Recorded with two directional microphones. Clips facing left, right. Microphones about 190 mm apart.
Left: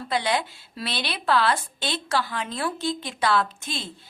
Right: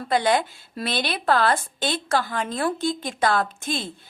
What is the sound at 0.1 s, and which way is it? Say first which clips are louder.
A woman's voice: right 5 dB; 50° right (ahead or behind).